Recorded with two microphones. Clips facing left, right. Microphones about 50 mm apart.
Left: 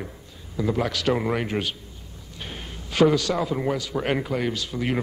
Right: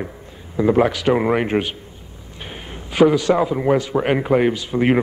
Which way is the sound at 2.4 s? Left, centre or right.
Centre.